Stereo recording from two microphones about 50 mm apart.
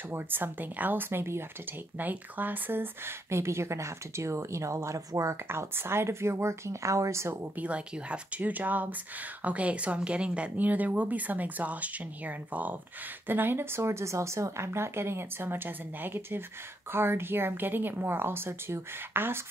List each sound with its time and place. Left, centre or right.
0.1 s a woman's voice: right
3.3 s speech: right
5.5 s speech: right
7.5 s speech: right
13.3 s a woman's voice: right